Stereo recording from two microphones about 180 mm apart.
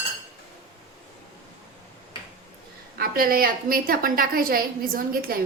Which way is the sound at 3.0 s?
55° right (ahead or behind).